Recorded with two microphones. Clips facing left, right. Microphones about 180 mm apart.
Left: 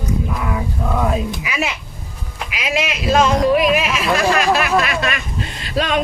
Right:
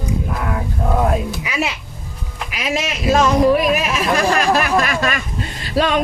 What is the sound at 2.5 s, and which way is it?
Speech, 45° right (ahead or behind).